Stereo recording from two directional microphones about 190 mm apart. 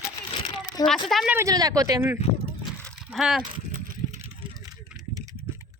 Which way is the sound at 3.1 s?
Centre (ahead or behind).